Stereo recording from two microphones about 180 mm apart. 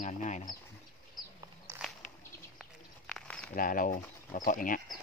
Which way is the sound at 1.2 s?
Centre (ahead or behind).